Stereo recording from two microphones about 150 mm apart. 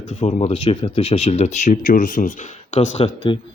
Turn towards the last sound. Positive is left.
turn(degrees=45)  # may be behind; listen again after turning